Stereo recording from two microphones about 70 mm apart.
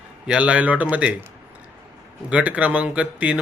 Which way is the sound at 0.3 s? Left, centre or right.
Centre.